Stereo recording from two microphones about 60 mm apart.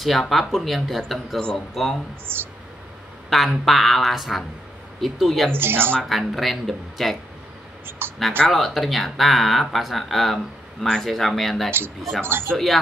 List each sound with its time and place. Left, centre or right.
0.0 s speech: centre
2.3 s speech: right
3.3 s speech: centre
5.5 s speech: right
6.0 s speech: centre
8.0 s a sound: right
8.5 s speech: centre
12.2 s speech: right
12.4 s speech: centre